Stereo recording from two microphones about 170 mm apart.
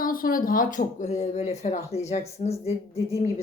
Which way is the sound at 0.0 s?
55° left (ahead or behind).